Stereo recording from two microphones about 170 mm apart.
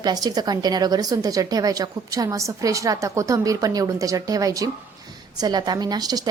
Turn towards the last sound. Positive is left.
turn(degrees=-20)  # may be behind; listen again after turning